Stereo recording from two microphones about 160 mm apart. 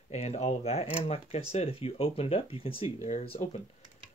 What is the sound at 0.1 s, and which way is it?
Speech, 45° left (ahead or behind).